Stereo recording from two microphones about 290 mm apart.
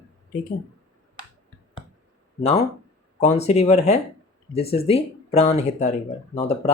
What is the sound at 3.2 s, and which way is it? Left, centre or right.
Speech, left.